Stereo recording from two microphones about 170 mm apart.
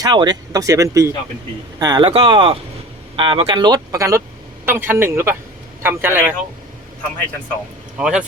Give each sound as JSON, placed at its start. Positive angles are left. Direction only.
{"t": 0.0, "sound": "a man's voice", "side_deg": -25}
{"t": 7.9, "sound": "speech", "side_deg": -5}